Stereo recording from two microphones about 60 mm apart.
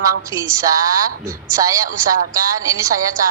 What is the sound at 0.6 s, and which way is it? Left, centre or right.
Speech, right.